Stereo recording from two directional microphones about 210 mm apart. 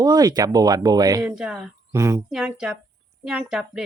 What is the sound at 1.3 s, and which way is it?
Speech, 5° right (ahead or behind).